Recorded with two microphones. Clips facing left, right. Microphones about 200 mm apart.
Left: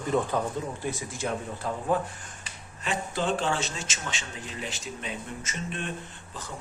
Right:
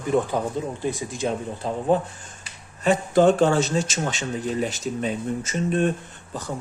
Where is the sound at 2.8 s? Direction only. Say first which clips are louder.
Right 12 dB; 45° right (ahead or behind).